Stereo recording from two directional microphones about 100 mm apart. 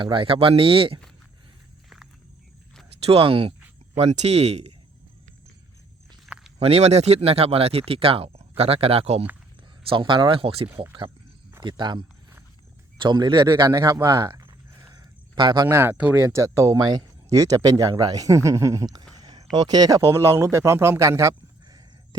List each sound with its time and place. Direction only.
0.0 s speech: 60° right (ahead or behind)
3.0 s speech: 80° right
3.9 s speech: 90° right
6.2 s walk: 5° right (ahead or behind)
6.6 s speech: 90° right
9.9 s speech: 55° right (ahead or behind)
11.6 s a man's voice: 50° right (ahead or behind)
13.7 s speech: 35° right (ahead or behind)
15.4 s a man's voice: 50° right (ahead or behind)
15.7 s speech: 20° right (ahead or behind)
16.1 s speech: 30° right (ahead or behind)
19.1 s a sound: 40° right (ahead or behind)
19.5 s speech: 45° right (ahead or behind)